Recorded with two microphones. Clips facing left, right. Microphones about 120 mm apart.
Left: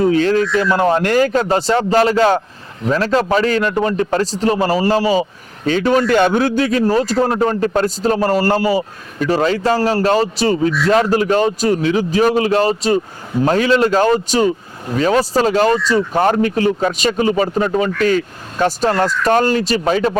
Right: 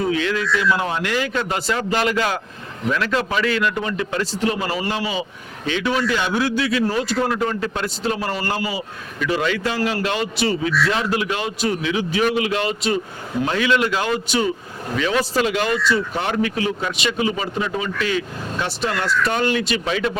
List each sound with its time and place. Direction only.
0.0 s a man's voice: 40° left (ahead or behind)